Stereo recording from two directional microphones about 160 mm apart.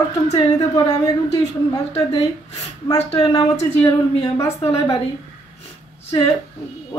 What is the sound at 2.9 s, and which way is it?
Speech, 35° left (ahead or behind).